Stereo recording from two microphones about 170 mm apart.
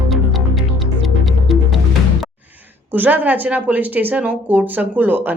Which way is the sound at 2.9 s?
10° right (ahead or behind).